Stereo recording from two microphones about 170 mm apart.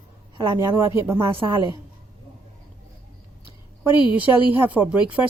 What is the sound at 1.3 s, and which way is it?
Speech, 30° right (ahead or behind).